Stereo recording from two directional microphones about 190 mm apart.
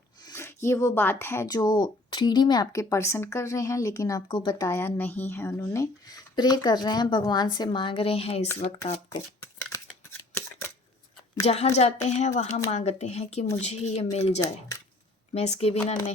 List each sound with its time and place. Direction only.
0.3 s speech: 15° left (ahead or behind); by 8.4 s 30° left (ahead or behind)
9.0 s shuffling cards: 15° left (ahead or behind)
11.4 s speech: 35° left (ahead or behind)